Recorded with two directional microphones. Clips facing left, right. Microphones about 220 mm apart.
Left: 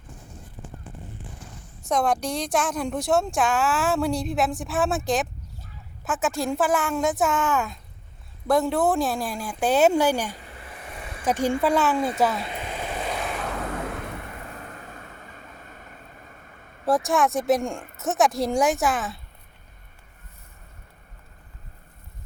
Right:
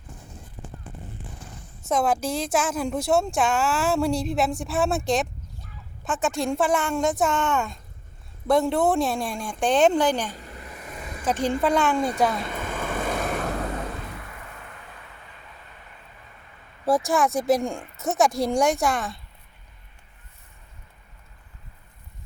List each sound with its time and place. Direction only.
1.9 s speech: centre (ahead or behind)
10.3 s a sound: 40° right (ahead or behind)
11.3 s speech: 10° left (ahead or behind)
12.4 s waves: 50° right (ahead or behind)
14.5 s vehicle: 40° left (ahead or behind)
16.8 s speech: centre (ahead or behind)